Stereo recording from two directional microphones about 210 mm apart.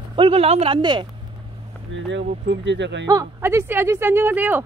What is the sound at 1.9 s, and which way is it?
Speech, 60° right (ahead or behind).